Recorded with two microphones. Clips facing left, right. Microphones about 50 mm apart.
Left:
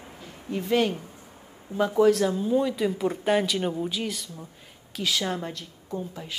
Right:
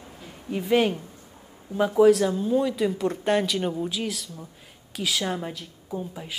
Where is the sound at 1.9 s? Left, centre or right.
Centre.